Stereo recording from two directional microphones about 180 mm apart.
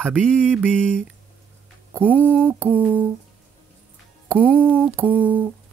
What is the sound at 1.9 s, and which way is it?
Mantra, 10° right (ahead or behind).